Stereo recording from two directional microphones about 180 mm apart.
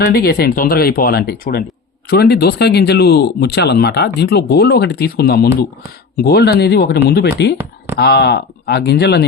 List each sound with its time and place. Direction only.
0.0 s speech: 60° left (ahead or behind)